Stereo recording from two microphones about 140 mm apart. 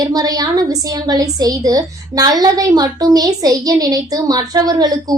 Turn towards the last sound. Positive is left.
turn(degrees=-25)  # may be behind; listen again after turning